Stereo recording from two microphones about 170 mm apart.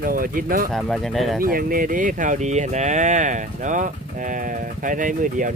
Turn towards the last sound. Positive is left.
turn(degrees=-50)  # may be behind; listen again after turning